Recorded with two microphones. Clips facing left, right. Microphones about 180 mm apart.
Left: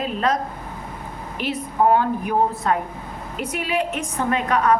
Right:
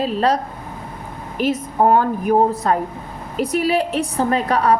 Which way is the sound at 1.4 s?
45° right (ahead or behind).